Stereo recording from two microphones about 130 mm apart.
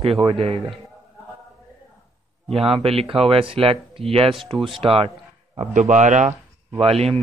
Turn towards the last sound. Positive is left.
turn(degrees=-50)  # may be behind; listen again after turning